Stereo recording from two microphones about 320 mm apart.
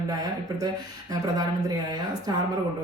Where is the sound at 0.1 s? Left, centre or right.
Centre.